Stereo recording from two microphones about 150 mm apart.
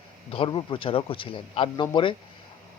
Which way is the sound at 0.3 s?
35° left (ahead or behind).